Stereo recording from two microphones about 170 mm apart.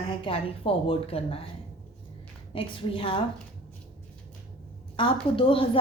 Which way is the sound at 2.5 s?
30° left (ahead or behind).